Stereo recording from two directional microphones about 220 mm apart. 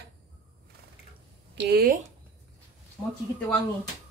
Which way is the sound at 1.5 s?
45° right (ahead or behind).